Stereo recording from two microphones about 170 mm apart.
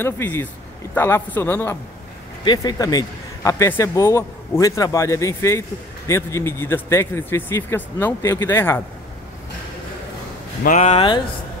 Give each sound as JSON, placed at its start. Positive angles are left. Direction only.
{"t": 0.0, "sound": "a man's voice", "side_deg": 10}
{"t": 10.6, "sound": "speech", "side_deg": 45}